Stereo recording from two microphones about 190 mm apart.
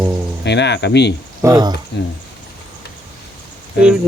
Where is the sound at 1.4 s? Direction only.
20° right (ahead or behind).